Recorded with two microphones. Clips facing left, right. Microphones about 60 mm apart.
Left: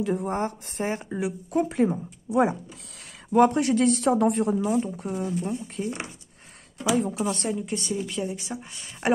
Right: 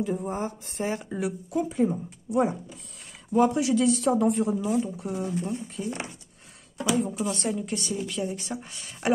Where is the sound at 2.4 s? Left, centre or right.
Left.